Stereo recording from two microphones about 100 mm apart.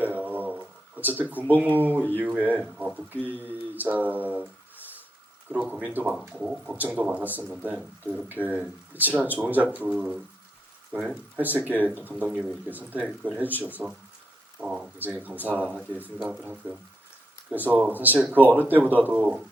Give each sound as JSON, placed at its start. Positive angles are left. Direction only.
{"t": 0.0, "sound": "a sound", "side_deg": -15}
{"t": 0.9, "sound": "speech", "side_deg": -20}
{"t": 5.5, "sound": "speech", "side_deg": -10}
{"t": 14.9, "sound": "speech", "side_deg": -20}